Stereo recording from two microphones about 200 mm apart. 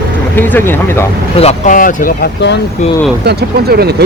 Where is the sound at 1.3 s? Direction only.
30° left (ahead or behind).